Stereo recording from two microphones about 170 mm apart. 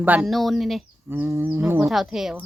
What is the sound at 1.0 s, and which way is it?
Speech, 15° right (ahead or behind).